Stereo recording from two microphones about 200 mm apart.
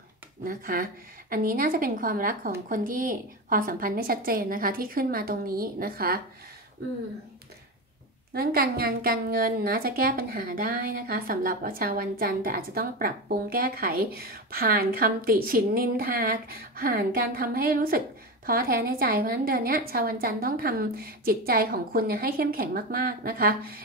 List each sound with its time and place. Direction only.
0.4 s a woman's voice: 45° right (ahead or behind)
8.3 s a woman's voice: 50° right (ahead or behind)